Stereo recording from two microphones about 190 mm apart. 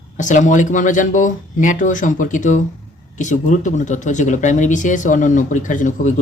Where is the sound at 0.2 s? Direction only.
40° left (ahead or behind).